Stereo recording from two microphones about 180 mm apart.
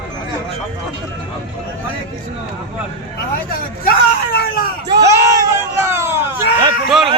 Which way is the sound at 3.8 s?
55° left (ahead or behind).